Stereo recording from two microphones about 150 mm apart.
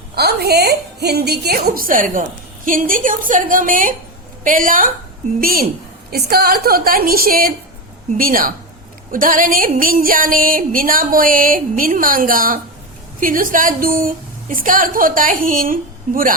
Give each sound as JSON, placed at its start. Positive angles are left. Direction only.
{"t": 0.2, "sound": "a woman's voice", "side_deg": -90}
{"t": 5.4, "sound": "a woman's voice", "side_deg": -75}
{"t": 8.2, "sound": "a sound", "side_deg": -70}